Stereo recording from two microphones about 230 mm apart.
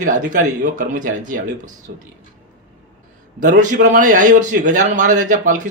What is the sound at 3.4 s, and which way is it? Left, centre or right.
A man's voice, right.